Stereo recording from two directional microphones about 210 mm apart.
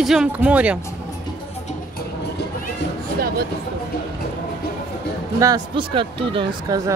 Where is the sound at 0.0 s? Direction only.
Centre (ahead or behind).